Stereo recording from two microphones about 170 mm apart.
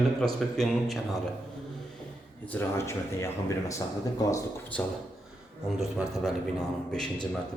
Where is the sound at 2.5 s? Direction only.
15° left (ahead or behind).